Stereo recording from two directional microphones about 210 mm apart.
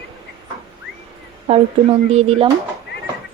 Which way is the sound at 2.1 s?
25° right (ahead or behind).